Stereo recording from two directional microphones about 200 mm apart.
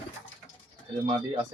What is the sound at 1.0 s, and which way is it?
Speech, 25° right (ahead or behind).